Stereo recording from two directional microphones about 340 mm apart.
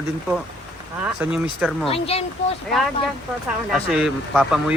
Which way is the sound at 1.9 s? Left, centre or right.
Centre.